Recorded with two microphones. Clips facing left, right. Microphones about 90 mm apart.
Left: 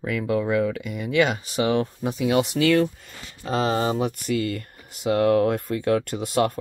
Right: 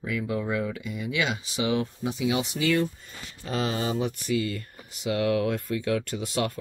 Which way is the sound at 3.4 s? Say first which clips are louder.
Left 6 dB; 40° left (ahead or behind).